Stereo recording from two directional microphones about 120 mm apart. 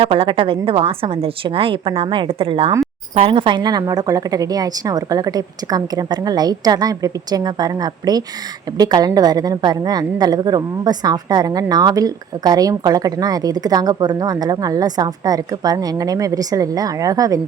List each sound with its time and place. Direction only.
0.0 s a woman's voice: 50° right (ahead or behind); by 17.4 s 30° right (ahead or behind)